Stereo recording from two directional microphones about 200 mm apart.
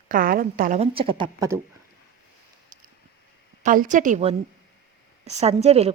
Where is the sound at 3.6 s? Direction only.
40° right (ahead or behind).